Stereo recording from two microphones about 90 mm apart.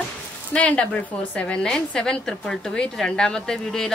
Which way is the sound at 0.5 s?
15° left (ahead or behind).